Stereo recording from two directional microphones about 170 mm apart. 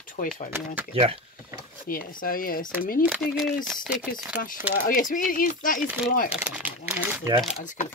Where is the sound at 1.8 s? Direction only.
55° left (ahead or behind).